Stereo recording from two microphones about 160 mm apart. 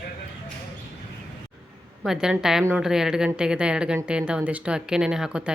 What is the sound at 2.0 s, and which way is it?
A woman's voice, 5° right (ahead or behind).